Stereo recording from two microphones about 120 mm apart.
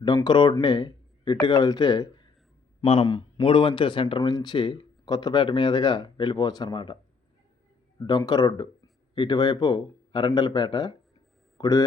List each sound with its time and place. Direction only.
0.3 s speech: 40° left (ahead or behind)
2.8 s a man's voice: 55° left (ahead or behind)
3.1 s a man's voice: 40° left (ahead or behind)